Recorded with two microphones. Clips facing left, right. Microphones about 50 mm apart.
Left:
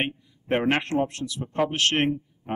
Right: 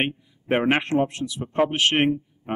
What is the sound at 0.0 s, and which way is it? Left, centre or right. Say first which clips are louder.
Speech: right 3 dB; centre.